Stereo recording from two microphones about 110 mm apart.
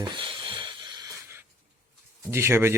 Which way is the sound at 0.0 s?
45° right (ahead or behind).